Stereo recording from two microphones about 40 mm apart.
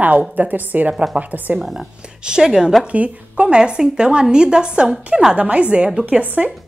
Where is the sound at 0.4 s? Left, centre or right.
Right.